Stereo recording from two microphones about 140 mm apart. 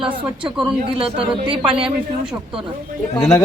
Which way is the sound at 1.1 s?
35° right (ahead or behind).